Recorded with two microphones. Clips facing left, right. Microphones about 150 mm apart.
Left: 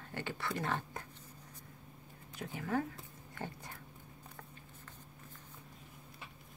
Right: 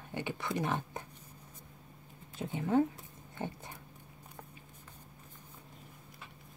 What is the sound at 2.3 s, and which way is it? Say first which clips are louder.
Speech: right 7 dB; 25° right (ahead or behind).